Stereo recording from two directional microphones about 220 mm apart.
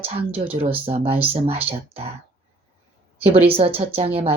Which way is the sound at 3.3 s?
25° right (ahead or behind).